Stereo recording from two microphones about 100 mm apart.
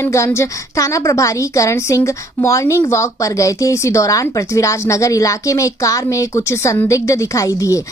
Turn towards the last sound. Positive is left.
turn(degrees=35)  # may be behind; listen again after turning